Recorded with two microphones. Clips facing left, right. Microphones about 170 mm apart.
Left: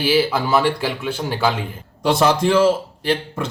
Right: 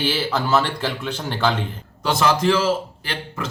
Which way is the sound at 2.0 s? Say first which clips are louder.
Left 3 dB; 30° left (ahead or behind).